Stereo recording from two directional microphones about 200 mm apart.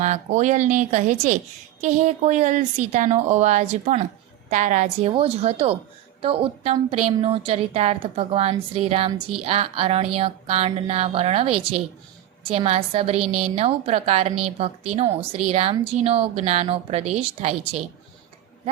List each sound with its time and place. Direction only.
0.0 s a woman's voice: 35° right (ahead or behind)